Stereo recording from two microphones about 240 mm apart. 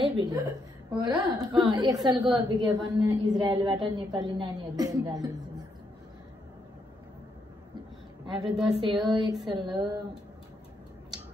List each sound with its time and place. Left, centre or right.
0.0 s a woman's voice: right
8.3 s a woman's voice: centre